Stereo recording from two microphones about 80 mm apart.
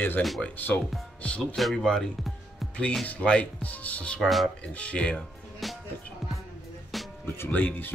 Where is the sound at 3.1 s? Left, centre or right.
Centre.